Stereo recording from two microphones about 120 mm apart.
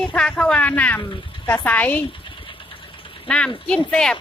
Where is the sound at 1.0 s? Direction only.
35° left (ahead or behind).